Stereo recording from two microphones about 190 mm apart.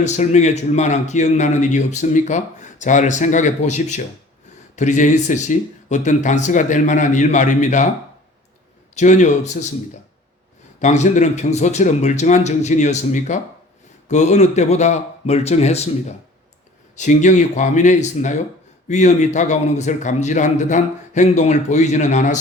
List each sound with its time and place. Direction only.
0.0 s a man's voice: 35° left (ahead or behind)
9.0 s a man's voice: 40° left (ahead or behind)
10.8 s a man's voice: 40° left (ahead or behind)